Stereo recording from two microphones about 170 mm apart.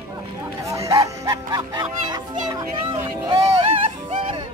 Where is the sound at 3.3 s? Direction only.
30° right (ahead or behind).